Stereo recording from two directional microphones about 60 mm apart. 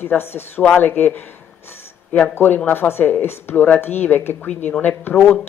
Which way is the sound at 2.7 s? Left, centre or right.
Left.